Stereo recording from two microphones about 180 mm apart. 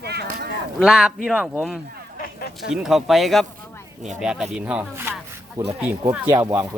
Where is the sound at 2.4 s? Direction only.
60° left (ahead or behind).